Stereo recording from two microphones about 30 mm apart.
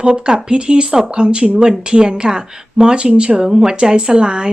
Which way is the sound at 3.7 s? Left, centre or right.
Right.